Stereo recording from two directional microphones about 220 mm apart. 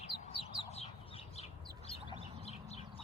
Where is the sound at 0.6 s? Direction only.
30° left (ahead or behind).